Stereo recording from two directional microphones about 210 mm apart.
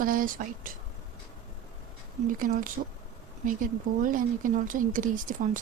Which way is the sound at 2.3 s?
40° right (ahead or behind).